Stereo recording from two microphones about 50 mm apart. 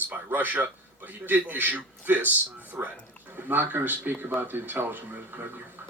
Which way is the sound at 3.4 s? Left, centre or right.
Right.